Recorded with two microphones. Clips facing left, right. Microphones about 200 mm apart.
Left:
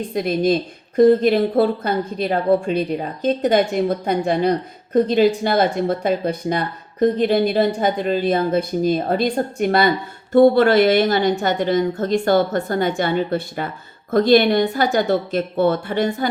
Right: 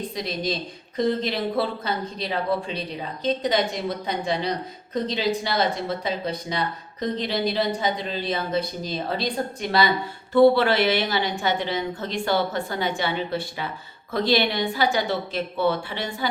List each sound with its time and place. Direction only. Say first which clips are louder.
0.1 s speech: left 10 dB; 55° left (ahead or behind)